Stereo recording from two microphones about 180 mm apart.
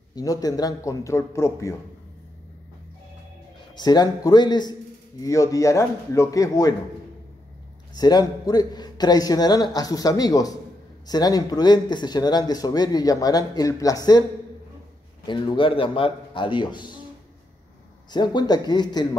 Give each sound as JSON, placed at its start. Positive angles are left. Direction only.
{"t": 0.1, "sound": "speech", "side_deg": 20}
{"t": 3.7, "sound": "speech", "side_deg": 25}
{"t": 7.9, "sound": "speech", "side_deg": 20}
{"t": 15.2, "sound": "speech", "side_deg": 25}
{"t": 18.1, "sound": "speech", "side_deg": 25}